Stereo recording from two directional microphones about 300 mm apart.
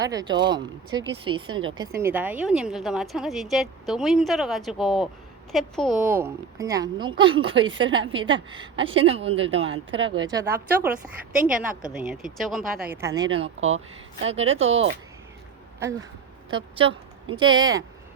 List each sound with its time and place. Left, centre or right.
0.0 s a woman's voice: centre
5.9 s speech: right
6.1 s a woman's voice: centre
11.9 s a woman's voice: centre
16.5 s a woman's voice: centre